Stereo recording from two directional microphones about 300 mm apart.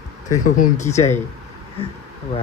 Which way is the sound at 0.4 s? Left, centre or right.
Left.